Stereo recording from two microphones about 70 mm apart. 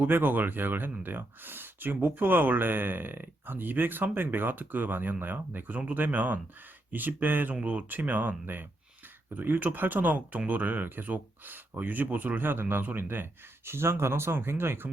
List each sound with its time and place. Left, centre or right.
0.0 s speech: right